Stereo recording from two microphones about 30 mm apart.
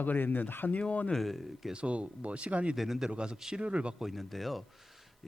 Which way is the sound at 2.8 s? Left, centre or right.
Centre.